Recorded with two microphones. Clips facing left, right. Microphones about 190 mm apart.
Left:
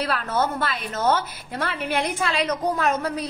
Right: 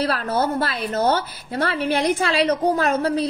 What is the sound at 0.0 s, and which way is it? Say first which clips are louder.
A woman's voice: right 3 dB; 35° right (ahead or behind).